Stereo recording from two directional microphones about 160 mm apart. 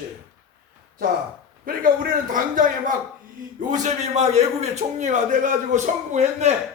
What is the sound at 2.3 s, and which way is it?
A man's voice, 55° right (ahead or behind).